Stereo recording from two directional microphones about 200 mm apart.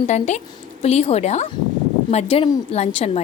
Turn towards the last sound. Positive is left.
turn(degrees=30)  # may be behind; listen again after turning